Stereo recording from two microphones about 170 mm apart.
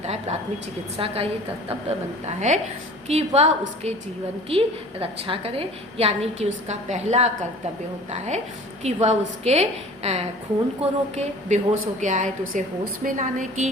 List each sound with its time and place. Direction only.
0.0 s a woman's voice: 40° right (ahead or behind)
8.8 s a woman's voice: 40° right (ahead or behind)